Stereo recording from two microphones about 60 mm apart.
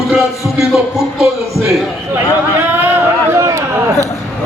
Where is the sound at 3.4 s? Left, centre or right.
Right.